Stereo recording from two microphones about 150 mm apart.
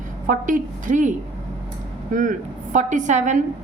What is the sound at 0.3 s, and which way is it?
Speech, 65° right (ahead or behind).